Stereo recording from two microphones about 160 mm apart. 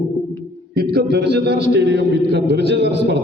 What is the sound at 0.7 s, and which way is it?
A man's voice, 90° right.